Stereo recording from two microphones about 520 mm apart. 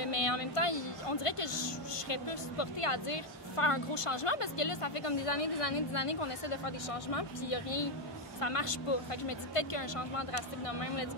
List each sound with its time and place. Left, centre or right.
0.0 s a woman's voice: left